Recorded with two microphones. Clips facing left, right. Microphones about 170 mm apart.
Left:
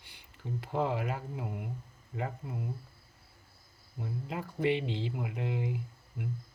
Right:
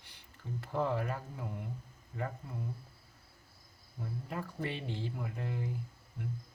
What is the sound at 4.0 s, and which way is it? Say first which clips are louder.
Speech: left 2 dB; 15° left (ahead or behind).